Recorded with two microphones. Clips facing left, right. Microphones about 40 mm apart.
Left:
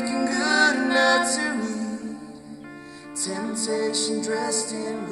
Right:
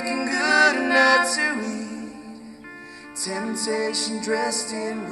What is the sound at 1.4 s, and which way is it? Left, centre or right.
Music, right.